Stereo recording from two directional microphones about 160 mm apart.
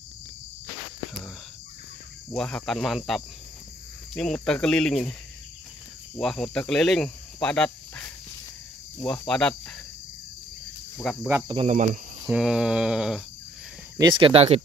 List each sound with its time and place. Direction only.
2.3 s cricket: 5° left (ahead or behind)
4.1 s cricket: 5° left (ahead or behind)
6.1 s speech: 5° left (ahead or behind)
9.3 s cricket: 5° left (ahead or behind)
11.0 s cricket: centre (ahead or behind)
11.4 s speech: 35° right (ahead or behind)
11.7 s speech: 50° right (ahead or behind)
12.3 s cricket: 5° right (ahead or behind)
13.9 s speech: 30° right (ahead or behind)